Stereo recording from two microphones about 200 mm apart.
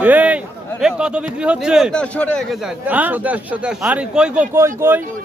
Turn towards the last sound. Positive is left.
turn(degrees=-10)  # may be behind; listen again after turning